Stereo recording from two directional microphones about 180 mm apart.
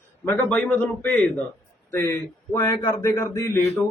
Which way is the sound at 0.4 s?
5° left (ahead or behind).